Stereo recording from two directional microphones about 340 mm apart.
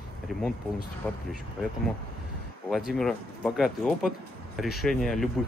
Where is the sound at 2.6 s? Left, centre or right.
Centre.